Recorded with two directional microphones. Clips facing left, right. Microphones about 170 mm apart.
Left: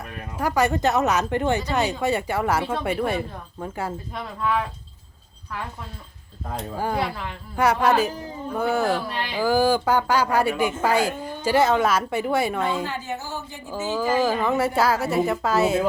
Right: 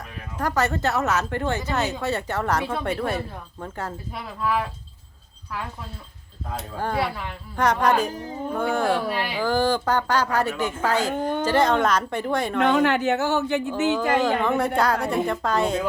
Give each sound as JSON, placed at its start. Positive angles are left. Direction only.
{"t": 0.3, "sound": "speech", "side_deg": 10}
{"t": 4.1, "sound": "a woman's voice", "side_deg": -5}
{"t": 6.7, "sound": "speech", "side_deg": 10}
{"t": 7.0, "sound": "a woman's voice", "side_deg": 0}
{"t": 9.1, "sound": "speech", "side_deg": -5}
{"t": 9.4, "sound": "speech", "side_deg": 10}
{"t": 11.2, "sound": "a sound", "side_deg": -65}
{"t": 11.4, "sound": "speech", "side_deg": 10}
{"t": 12.5, "sound": "a woman's voice", "side_deg": -80}
{"t": 14.1, "sound": "a woman's voice", "side_deg": 5}